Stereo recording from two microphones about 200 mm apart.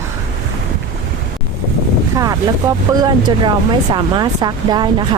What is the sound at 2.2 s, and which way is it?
Speech, 15° right (ahead or behind).